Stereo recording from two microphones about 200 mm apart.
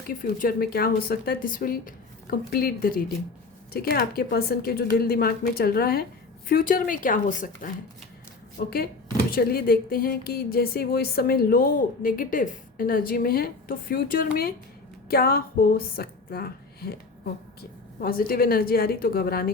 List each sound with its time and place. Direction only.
0.1 s a woman's voice: 45° left (ahead or behind)
18.0 s speech: 45° left (ahead or behind)